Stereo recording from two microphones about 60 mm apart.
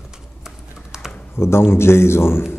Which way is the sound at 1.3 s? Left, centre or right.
Left.